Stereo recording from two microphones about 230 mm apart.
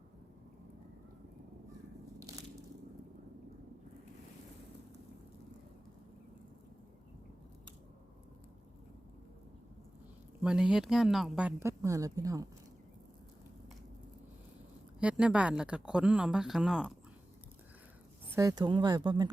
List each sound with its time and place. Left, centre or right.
2.1 s crushing: centre
10.4 s speech: centre
14.9 s speech: centre
18.3 s speech: centre